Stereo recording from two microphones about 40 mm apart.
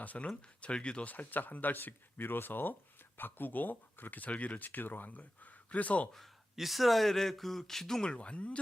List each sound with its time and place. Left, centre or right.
0.0 s speech: left
0.3 s speech: left
1.0 s speech: left
6.6 s speech: centre
8.0 s speech: left